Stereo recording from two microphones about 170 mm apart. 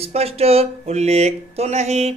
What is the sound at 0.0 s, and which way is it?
Speech, 35° right (ahead or behind).